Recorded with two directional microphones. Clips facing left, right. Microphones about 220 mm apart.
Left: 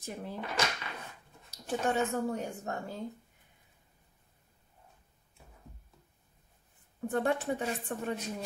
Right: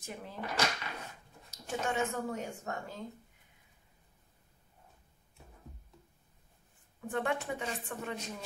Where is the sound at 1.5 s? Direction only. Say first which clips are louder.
Left 4 dB; 35° left (ahead or behind).